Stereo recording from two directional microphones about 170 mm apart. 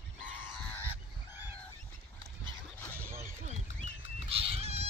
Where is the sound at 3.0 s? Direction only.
15° right (ahead or behind).